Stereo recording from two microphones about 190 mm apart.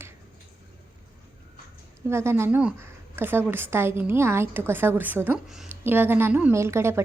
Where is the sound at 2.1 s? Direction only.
15° right (ahead or behind).